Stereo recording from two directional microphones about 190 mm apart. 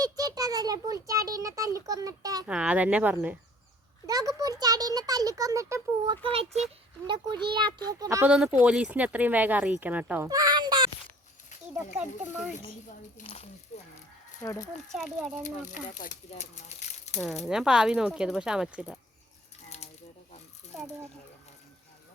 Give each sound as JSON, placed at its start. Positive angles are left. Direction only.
{"t": 0.0, "sound": "a child's voice", "side_deg": -20}
{"t": 2.5, "sound": "a child's voice", "side_deg": -5}
{"t": 6.2, "sound": "a child's voice", "side_deg": -30}
{"t": 8.6, "sound": "speech", "side_deg": -5}
{"t": 10.2, "sound": "a child's voice", "side_deg": -20}
{"t": 11.9, "sound": "speech", "side_deg": -5}
{"t": 13.2, "sound": "speech", "side_deg": 35}
{"t": 14.4, "sound": "speech", "side_deg": 20}
{"t": 14.9, "sound": "speech", "side_deg": 0}
{"t": 15.4, "sound": "speech", "side_deg": 45}
{"t": 17.4, "sound": "speech", "side_deg": -5}
{"t": 19.6, "sound": "a sound", "side_deg": 35}